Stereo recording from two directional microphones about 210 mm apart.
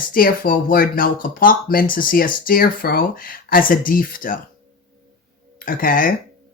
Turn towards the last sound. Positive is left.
turn(degrees=40)  # may be behind; listen again after turning